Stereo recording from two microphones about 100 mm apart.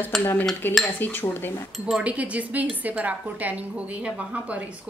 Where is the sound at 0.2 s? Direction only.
20° left (ahead or behind).